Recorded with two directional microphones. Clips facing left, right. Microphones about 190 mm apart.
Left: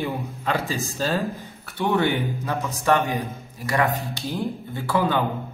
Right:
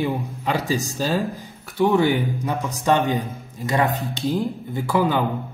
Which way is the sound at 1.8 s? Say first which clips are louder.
Right 4 dB; 15° right (ahead or behind).